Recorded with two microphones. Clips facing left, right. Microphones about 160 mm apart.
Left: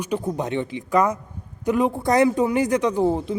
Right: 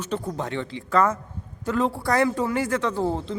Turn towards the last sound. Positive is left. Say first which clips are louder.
# left 5 dB
turn(degrees=15)  # may be behind; listen again after turning